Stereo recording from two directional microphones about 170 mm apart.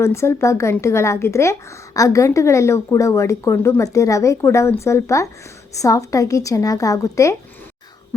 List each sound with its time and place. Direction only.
0.0 s a woman's voice: 15° left (ahead or behind)